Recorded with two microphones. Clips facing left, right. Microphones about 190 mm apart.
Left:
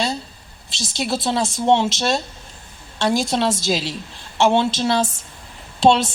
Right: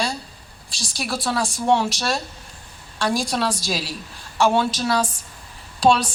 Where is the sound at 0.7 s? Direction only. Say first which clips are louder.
Left 4 dB; 25° left (ahead or behind).